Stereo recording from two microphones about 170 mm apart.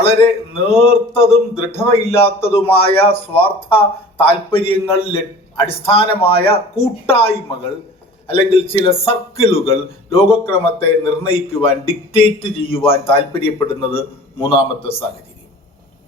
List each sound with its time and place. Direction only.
0.7 s a man's voice: 35° left (ahead or behind)